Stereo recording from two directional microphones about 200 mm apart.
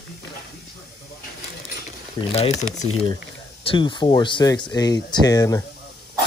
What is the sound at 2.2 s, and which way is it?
Speech, 30° left (ahead or behind).